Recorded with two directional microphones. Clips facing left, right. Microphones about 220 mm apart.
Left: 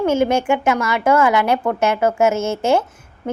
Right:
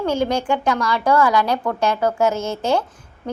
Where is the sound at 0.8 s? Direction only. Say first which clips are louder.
Left 1 dB; 20° left (ahead or behind).